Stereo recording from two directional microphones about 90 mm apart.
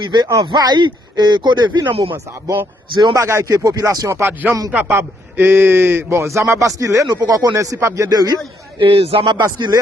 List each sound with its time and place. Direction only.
0.0 s speech: 60° right (ahead or behind); by 2.1 s 75° right (ahead or behind)
2.1 s speech: 40° right (ahead or behind)
4.2 s a man's voice: 20° right (ahead or behind); by 8.4 s 40° right (ahead or behind)
8.8 s speech: 90° right; by 9.7 s 55° right (ahead or behind)